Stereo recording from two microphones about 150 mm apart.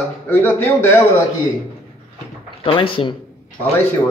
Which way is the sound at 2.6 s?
35° left (ahead or behind).